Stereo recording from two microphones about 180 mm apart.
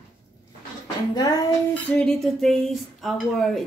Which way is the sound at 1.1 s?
20° left (ahead or behind).